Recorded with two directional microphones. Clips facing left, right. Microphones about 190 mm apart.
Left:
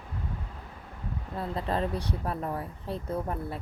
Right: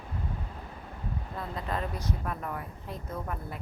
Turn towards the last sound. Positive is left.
turn(degrees=30)  # may be behind; listen again after turning